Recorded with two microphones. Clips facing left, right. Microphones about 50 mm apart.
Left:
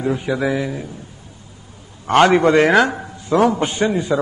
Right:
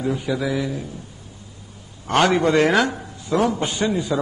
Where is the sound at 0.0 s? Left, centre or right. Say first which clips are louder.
Left 3 dB; left.